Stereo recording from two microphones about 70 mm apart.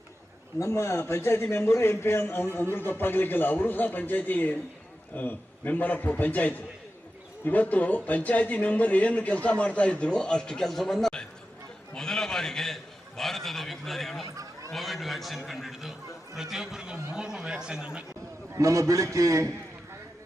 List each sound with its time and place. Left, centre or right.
0.6 s a man's voice: left; by 14.3 s centre
14.3 s a sound: right
14.7 s a man's voice: centre
18.5 s a man's voice: right